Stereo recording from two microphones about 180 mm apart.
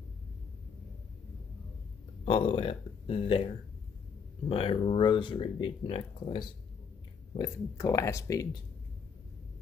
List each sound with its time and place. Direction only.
2.2 s speech: 30° left (ahead or behind)
4.5 s speech: 30° left (ahead or behind)
7.3 s speech: 20° left (ahead or behind)